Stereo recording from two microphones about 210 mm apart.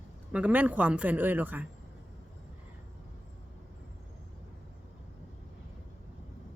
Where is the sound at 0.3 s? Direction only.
5° right (ahead or behind).